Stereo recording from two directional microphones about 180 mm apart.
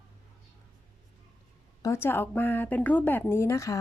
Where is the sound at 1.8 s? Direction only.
15° left (ahead or behind).